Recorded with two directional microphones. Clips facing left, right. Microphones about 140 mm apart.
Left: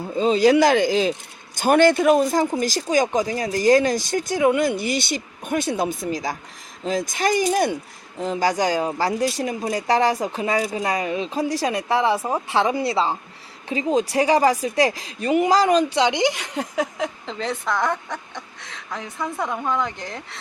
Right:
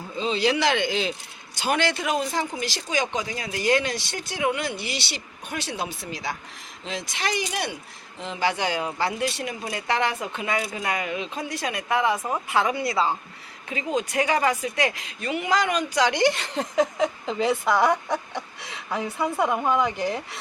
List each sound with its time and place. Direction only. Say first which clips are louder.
0.2 s speech: left 8 dB; 45° left (ahead or behind); by 17.1 s 5° left (ahead or behind)
17.2 s speech: right 3 dB; 5° right (ahead or behind)